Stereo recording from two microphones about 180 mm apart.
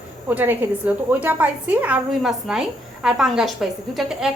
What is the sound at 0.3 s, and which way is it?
A woman's voice, 10° right (ahead or behind).